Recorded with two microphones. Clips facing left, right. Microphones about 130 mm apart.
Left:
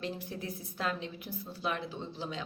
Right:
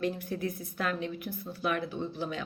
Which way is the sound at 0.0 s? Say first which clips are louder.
Right 6 dB; 25° left (ahead or behind).